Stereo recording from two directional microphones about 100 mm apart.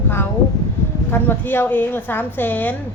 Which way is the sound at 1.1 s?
20° left (ahead or behind).